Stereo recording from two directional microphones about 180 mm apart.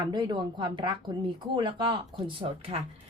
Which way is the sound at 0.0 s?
25° right (ahead or behind).